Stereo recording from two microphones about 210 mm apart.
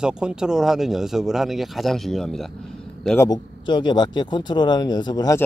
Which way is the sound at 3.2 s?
20° left (ahead or behind).